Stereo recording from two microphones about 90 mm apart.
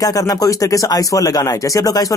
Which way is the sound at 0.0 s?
45° left (ahead or behind).